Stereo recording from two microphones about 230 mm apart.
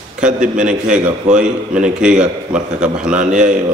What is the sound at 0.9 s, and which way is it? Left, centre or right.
A man's voice, centre.